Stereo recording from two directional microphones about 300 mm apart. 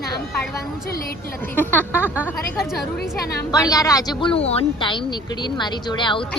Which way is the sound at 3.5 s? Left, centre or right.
Centre.